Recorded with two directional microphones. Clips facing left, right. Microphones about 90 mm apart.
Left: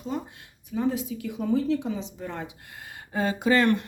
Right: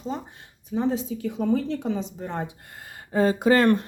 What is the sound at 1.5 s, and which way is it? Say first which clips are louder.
Speech: even; 45° right (ahead or behind).